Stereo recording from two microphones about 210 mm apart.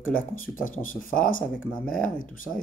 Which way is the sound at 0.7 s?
40° left (ahead or behind).